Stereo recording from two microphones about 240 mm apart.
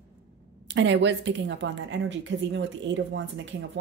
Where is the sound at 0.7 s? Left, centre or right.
Right.